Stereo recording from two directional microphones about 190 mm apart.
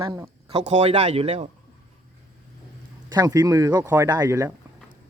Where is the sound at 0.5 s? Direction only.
35° right (ahead or behind).